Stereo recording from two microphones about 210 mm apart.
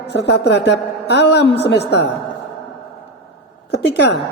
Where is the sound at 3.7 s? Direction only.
55° left (ahead or behind).